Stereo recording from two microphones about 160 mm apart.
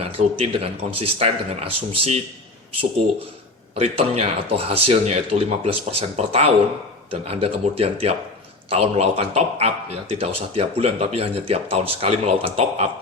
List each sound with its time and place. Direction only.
0.0 s a man's voice: 40° right (ahead or behind)
3.8 s a man's voice: 40° right (ahead or behind)